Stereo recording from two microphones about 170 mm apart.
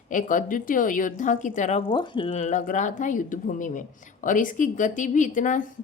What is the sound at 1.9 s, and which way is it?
Speech, 30° left (ahead or behind).